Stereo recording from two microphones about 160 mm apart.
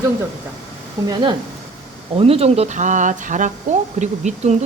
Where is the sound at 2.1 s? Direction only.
35° right (ahead or behind).